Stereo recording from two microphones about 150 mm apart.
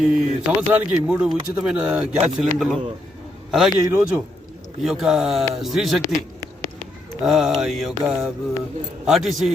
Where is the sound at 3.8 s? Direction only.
15° right (ahead or behind).